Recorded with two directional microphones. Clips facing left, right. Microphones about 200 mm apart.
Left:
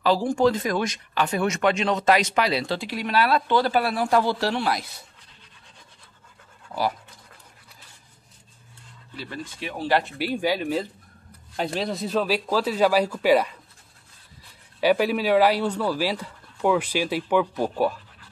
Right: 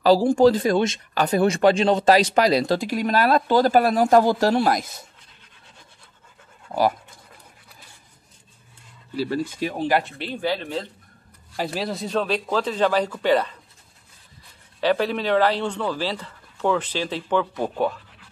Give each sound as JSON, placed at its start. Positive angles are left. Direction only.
{"t": 0.0, "sound": "speech", "side_deg": -35}
{"t": 1.1, "sound": "speech", "side_deg": -35}
{"t": 6.7, "sound": "speech", "side_deg": -45}
{"t": 9.1, "sound": "speech", "side_deg": -35}
{"t": 9.8, "sound": "speech", "side_deg": -15}
{"t": 10.0, "sound": "speech", "side_deg": 5}
{"t": 11.5, "sound": "speech", "side_deg": -5}
{"t": 14.8, "sound": "speech", "side_deg": 10}